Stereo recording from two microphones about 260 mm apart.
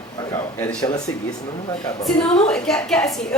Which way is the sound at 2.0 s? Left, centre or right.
Centre.